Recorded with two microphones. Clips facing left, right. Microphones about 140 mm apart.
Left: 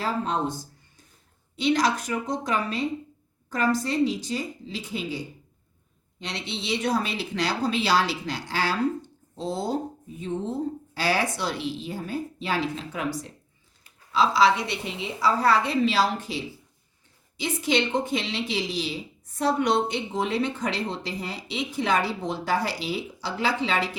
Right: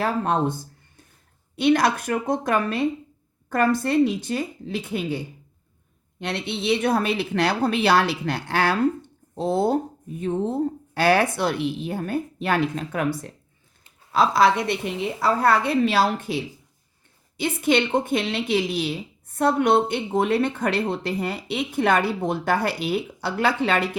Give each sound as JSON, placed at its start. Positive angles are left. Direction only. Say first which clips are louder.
{"t": 0.0, "sound": "a woman's voice", "louder": "right 4 dB", "side_deg": -55}